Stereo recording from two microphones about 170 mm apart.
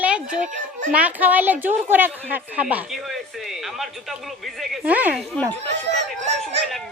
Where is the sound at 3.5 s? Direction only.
Centre (ahead or behind).